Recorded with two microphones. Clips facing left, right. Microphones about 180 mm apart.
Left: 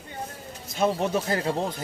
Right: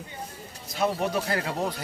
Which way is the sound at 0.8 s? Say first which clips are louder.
Left 2 dB; 25° left (ahead or behind).